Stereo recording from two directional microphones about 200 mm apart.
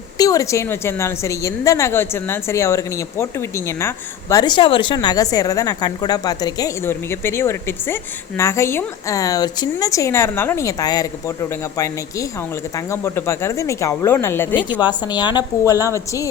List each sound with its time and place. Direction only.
0.2 s a woman's voice: 15° left (ahead or behind)
12.7 s a woman's voice: 15° left (ahead or behind)
14.5 s a woman's voice: 25° left (ahead or behind)